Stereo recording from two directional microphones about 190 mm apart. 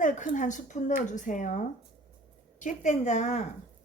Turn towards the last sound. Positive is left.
turn(degrees=40)  # may be behind; listen again after turning